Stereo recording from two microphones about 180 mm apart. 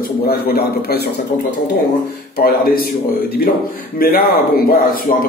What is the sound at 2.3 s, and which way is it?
Speech, 55° left (ahead or behind).